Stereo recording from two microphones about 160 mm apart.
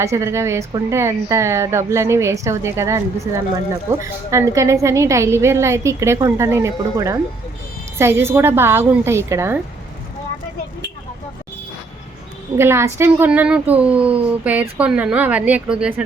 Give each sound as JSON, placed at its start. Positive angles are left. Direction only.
{"t": 0.0, "sound": "a woman's voice", "side_deg": -20}
{"t": 12.5, "sound": "a woman's voice", "side_deg": -15}